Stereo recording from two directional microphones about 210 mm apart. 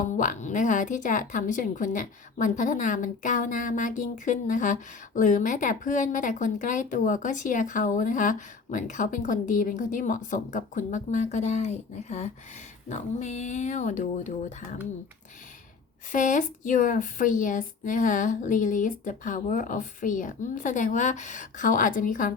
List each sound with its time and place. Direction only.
0.0 s a woman's voice: 40° left (ahead or behind)
16.1 s a woman's voice: 40° left (ahead or behind)